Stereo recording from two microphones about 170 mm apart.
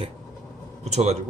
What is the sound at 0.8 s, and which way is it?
Speech, 40° right (ahead or behind).